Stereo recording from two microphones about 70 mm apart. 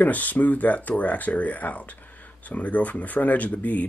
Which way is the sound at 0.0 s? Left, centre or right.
Left.